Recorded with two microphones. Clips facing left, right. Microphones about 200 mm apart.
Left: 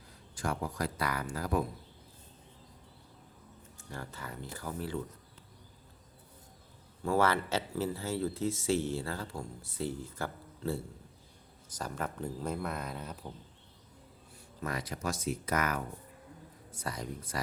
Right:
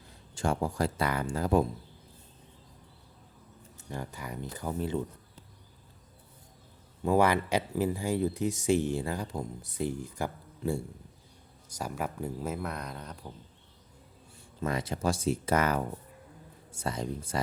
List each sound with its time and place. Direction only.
0.3 s speech: 25° right (ahead or behind)
3.8 s speech: 20° right (ahead or behind)
7.0 s speech: 15° right (ahead or behind); by 13.3 s 5° left (ahead or behind)
14.6 s speech: 25° right (ahead or behind)